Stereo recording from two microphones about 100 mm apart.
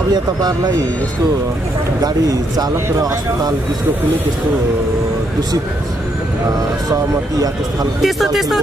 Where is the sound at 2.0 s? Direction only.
40° right (ahead or behind).